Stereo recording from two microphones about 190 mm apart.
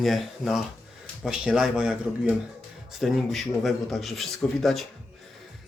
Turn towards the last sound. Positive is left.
turn(degrees=0)  # may be behind; listen again after turning